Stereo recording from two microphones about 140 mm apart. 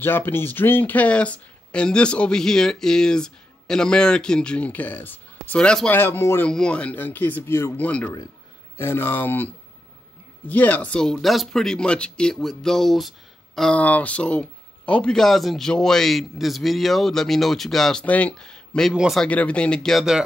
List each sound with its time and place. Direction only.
0.0 s speech: 15° left (ahead or behind); by 20.2 s centre (ahead or behind)